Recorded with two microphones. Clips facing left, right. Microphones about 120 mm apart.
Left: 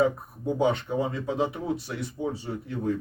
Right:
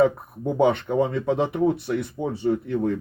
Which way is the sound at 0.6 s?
60° right (ahead or behind).